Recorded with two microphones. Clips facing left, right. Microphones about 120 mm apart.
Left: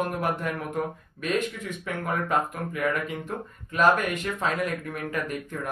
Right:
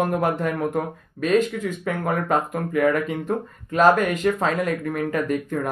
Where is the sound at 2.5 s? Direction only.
45° right (ahead or behind).